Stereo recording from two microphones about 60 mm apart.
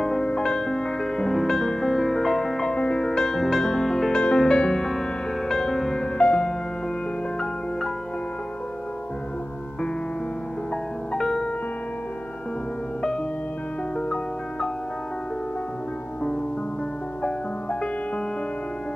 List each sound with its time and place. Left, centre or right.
0.0 s music: centre
10.7 s music: centre
13.9 s music: centre